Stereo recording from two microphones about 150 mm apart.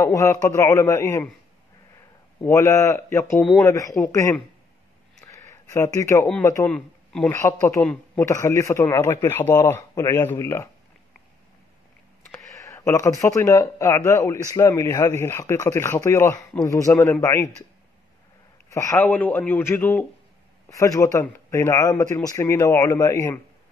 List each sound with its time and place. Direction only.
0.0 s speech: 20° left (ahead or behind)
2.4 s speech: 20° left (ahead or behind)
5.2 s a sound: 20° left (ahead or behind)
6.4 s speech: 20° left (ahead or behind)
6.7 s a man's voice: 5° left (ahead or behind)
7.8 s speech: 20° left (ahead or behind)
12.5 s speech: 20° left (ahead or behind)
18.7 s a man's voice: 20° left (ahead or behind)